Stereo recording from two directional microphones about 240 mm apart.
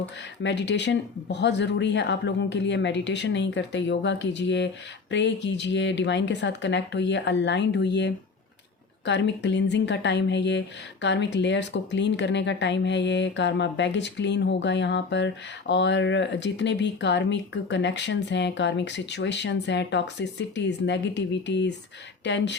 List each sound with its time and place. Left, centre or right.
0.4 s speech: left